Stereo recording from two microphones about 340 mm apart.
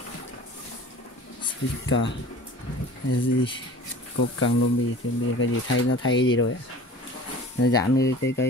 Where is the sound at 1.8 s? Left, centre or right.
Left.